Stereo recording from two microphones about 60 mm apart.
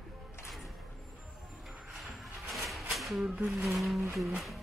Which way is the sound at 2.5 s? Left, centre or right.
Centre.